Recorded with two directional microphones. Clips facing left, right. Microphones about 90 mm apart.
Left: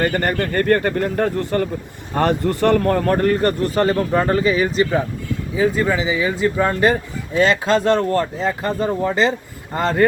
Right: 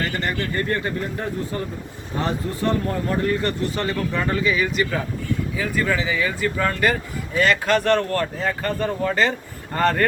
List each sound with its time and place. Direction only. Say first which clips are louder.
0.0 s speech: left 6 dB; 50° left (ahead or behind); by 4.9 s 35° left (ahead or behind)
5.5 s speech: left 7 dB; 25° left (ahead or behind)